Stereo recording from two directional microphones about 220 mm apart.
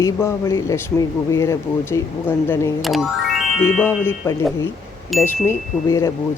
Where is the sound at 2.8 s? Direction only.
Centre (ahead or behind).